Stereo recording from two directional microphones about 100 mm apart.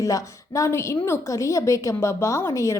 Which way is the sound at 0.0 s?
30° left (ahead or behind).